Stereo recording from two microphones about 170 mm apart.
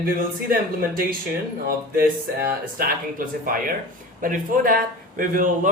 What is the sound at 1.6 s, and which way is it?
Speech, 60° right (ahead or behind).